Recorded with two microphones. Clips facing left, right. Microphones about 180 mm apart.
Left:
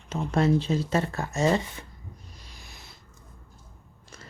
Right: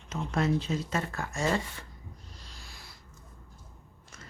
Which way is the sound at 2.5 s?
20° left (ahead or behind).